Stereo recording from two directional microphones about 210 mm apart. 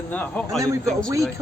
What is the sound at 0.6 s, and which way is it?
Speech, 15° right (ahead or behind).